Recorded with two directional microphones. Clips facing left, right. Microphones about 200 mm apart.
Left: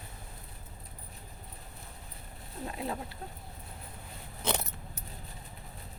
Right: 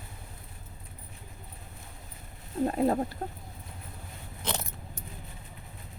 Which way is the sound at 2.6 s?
45° right (ahead or behind).